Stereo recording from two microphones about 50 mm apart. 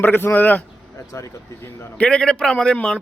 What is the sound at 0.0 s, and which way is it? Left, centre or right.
Speech, left.